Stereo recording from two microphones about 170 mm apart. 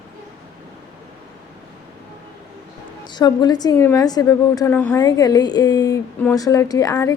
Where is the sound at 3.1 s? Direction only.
25° left (ahead or behind).